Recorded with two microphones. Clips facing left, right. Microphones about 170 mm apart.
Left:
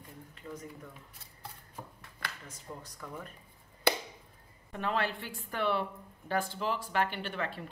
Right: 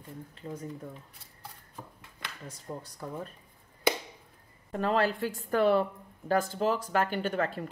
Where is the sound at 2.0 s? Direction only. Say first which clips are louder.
Left 1 dB; 20° right (ahead or behind).